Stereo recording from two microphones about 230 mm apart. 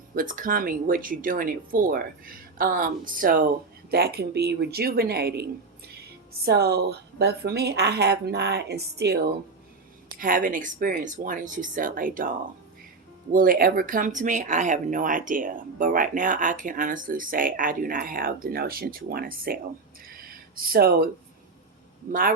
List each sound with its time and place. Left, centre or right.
0.1 s speech: right
13.3 s speech: right
20.2 s a sound: right
22.0 s speech: right